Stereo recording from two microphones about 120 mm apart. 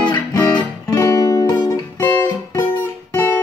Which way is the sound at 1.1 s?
30° left (ahead or behind).